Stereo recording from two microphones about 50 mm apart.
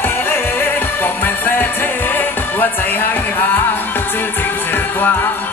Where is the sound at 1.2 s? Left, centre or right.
Left.